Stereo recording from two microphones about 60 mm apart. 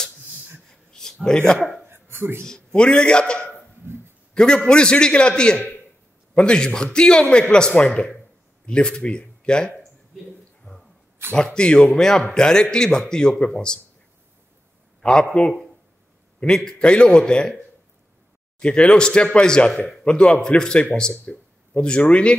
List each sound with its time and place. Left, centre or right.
0.7 s a sound: centre
1.2 s speech: centre
1.9 s a sound: right
2.4 s a man's voice: centre
4.3 s a sound: centre
4.6 s speech: centre
10.6 s a sound: centre
11.3 s speech: centre
15.0 s speech: centre
18.6 s speech: centre
19.7 s a man's voice: centre
20.1 s speech: centre